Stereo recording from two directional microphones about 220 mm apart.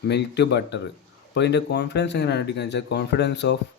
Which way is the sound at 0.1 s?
50° left (ahead or behind).